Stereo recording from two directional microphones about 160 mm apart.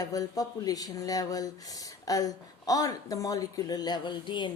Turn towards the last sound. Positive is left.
turn(degrees=30)  # may be behind; listen again after turning